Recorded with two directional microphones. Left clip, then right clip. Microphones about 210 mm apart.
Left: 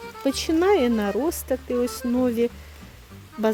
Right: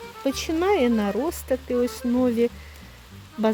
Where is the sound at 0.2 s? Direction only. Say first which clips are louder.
Left 2 dB; 10° left (ahead or behind).